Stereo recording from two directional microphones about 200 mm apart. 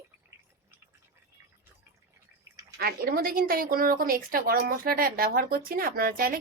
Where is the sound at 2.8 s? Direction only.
50° right (ahead or behind).